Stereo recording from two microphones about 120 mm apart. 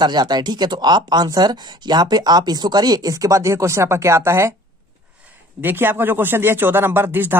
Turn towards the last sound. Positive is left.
turn(degrees=-15)  # may be behind; listen again after turning